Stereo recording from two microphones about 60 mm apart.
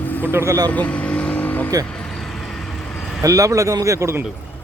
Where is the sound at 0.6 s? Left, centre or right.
Left.